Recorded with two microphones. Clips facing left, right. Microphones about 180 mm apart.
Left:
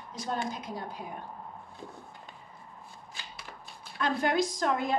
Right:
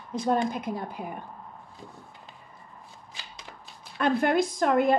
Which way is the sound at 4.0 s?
60° right (ahead or behind).